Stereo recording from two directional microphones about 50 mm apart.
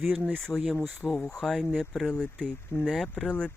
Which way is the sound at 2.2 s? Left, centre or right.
Centre.